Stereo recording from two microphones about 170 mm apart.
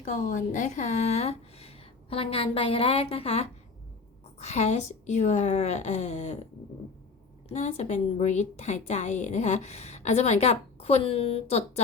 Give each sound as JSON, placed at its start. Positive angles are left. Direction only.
{"t": 0.0, "sound": "a woman's voice", "side_deg": 50}
{"t": 7.4, "sound": "a woman's voice", "side_deg": 45}